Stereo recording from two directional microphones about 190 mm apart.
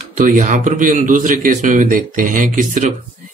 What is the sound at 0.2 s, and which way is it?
A man's voice, 40° right (ahead or behind).